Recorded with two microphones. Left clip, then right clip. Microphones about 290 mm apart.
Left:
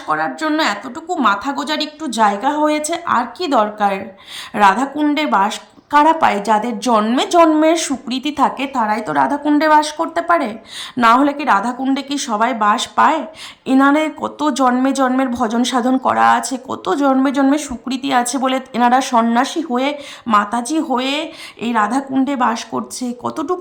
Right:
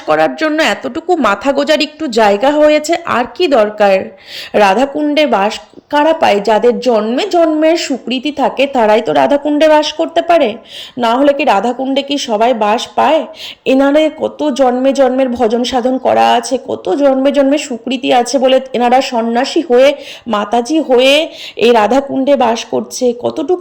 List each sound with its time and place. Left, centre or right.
0.1 s speech: centre
10.2 s a woman's voice: left
10.9 s speech: centre